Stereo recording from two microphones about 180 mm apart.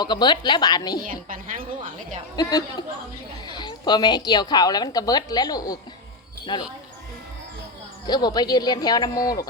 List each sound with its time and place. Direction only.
0.0 s a woman's voice: 25° left (ahead or behind)
1.0 s a woman's voice: 50° right (ahead or behind)
2.3 s a woman's voice: 20° left (ahead or behind)
8.0 s a woman's voice: 25° left (ahead or behind)